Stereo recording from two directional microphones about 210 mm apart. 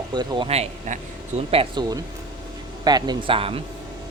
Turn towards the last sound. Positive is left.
turn(degrees=-25)  # may be behind; listen again after turning